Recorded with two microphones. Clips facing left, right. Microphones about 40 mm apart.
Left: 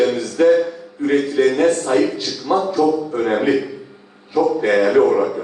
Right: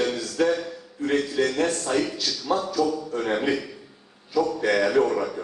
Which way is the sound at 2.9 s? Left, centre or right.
Left.